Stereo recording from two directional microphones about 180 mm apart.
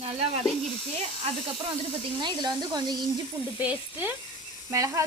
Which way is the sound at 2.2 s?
25° right (ahead or behind).